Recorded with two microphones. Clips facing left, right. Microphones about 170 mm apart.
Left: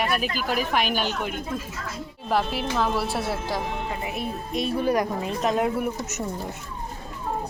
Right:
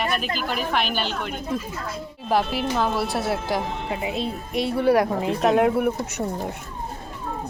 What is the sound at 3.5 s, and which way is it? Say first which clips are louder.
Speech: right 2 dB; 20° right (ahead or behind).